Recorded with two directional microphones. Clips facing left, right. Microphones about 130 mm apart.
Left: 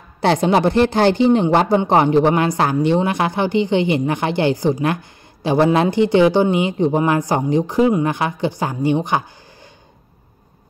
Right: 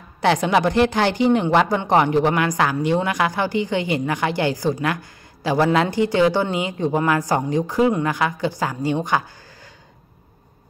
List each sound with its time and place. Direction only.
0.2 s a woman's voice: 35° left (ahead or behind)